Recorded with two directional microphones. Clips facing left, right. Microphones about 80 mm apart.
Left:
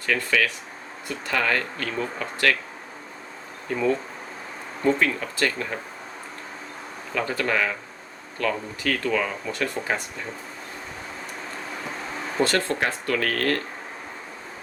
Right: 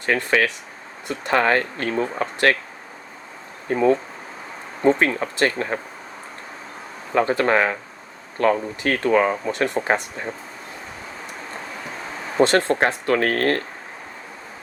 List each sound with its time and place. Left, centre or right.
0.0 s speech: right
3.7 s speech: right
7.1 s speech: right
9.5 s speech: right
9.8 s speech: right
12.4 s speech: right
12.8 s speech: right